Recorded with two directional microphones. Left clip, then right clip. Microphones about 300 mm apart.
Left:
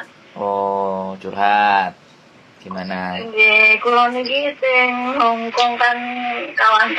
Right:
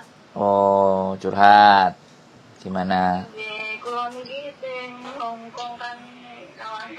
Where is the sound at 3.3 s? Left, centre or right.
Left.